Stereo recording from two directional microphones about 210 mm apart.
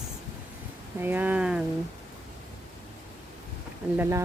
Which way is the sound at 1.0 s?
10° right (ahead or behind).